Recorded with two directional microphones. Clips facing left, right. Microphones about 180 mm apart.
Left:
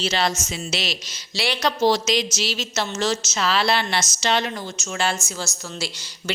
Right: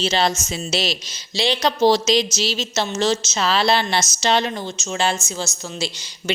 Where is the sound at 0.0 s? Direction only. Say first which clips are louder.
Right 3 dB; 25° right (ahead or behind).